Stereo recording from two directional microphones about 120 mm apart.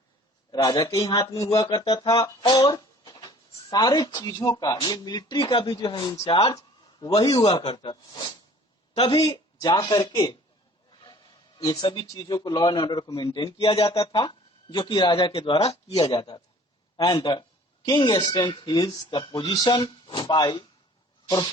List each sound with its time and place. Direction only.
0.5 s a man's voice: 35° left (ahead or behind)
6.5 s a sound: 30° left (ahead or behind)
7.2 s speech: 45° left (ahead or behind)
8.9 s a man's voice: 55° left (ahead or behind)
9.2 s speech: 30° left (ahead or behind); by 15.8 s 55° left (ahead or behind)
15.9 s speech: 30° left (ahead or behind)